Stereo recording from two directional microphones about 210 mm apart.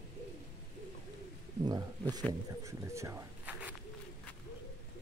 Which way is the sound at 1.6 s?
20° right (ahead or behind).